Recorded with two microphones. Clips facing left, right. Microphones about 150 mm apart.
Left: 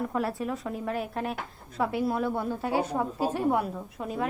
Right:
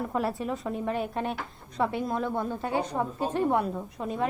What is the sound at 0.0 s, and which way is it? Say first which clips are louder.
A woman's voice: even; centre (ahead or behind).